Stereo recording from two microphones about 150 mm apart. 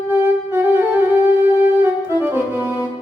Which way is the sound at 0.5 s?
15° right (ahead or behind).